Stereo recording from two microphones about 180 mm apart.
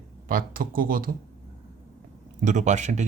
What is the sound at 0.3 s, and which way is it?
Speech, 50° right (ahead or behind).